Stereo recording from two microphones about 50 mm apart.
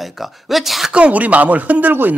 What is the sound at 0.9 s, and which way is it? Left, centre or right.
Speech, right.